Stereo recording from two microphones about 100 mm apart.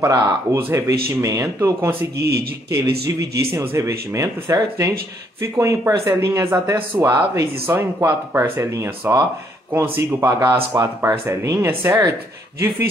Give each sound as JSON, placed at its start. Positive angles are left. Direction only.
{"t": 0.0, "sound": "speech", "side_deg": -35}
{"t": 0.6, "sound": "speech", "side_deg": -20}
{"t": 0.8, "sound": "speech", "side_deg": -35}